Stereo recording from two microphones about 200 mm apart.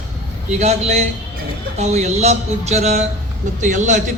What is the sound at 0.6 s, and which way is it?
A man's voice, 35° right (ahead or behind).